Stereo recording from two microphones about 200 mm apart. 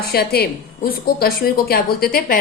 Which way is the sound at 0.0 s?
50° left (ahead or behind).